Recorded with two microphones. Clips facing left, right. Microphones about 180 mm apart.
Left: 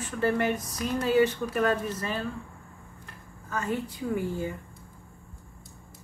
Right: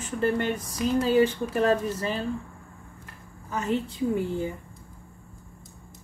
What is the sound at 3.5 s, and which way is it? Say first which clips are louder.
A woman's voice: right 3 dB; 20° right (ahead or behind).